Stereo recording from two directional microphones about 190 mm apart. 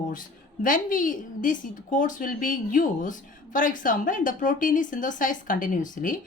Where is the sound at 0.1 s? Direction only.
45° left (ahead or behind).